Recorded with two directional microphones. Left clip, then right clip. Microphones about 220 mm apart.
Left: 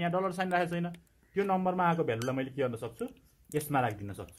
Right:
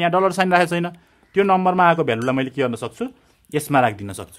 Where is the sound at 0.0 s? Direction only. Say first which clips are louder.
Right 14 dB; 40° right (ahead or behind).